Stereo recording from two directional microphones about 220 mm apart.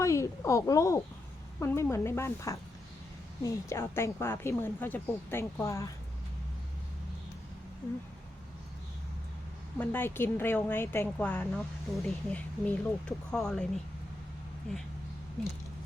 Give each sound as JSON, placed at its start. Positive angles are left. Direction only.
{"t": 0.0, "sound": "a woman's voice", "side_deg": 15}
{"t": 9.7, "sound": "a woman's voice", "side_deg": 10}
{"t": 14.7, "sound": "speech", "side_deg": 0}